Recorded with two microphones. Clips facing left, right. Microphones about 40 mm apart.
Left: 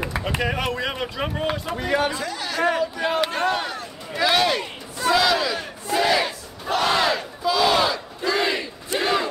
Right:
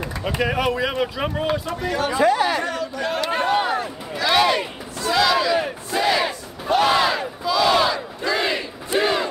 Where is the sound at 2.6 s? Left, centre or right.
Centre.